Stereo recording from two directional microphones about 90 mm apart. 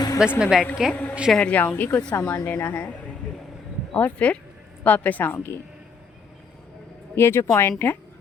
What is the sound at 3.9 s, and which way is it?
A woman's voice, 20° left (ahead or behind).